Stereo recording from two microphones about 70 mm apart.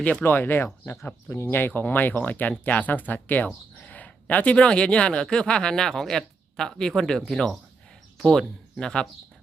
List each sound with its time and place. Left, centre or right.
0.0 s speech: left
0.3 s speech: left; by 9.0 s centre